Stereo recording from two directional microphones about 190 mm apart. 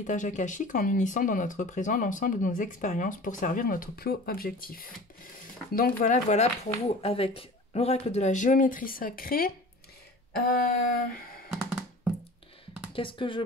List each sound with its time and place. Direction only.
0.0 s speech: 40° left (ahead or behind)
11.5 s music: 5° right (ahead or behind)
12.9 s speech: 25° left (ahead or behind)